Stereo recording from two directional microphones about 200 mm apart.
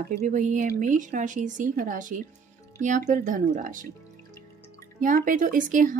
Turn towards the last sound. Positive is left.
turn(degrees=-40)  # may be behind; listen again after turning